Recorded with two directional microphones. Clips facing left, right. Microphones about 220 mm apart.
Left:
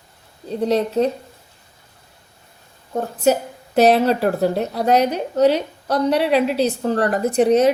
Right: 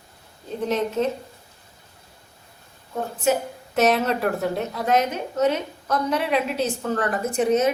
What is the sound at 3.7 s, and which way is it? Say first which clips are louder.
A woman's voice: left 6 dB; 35° left (ahead or behind).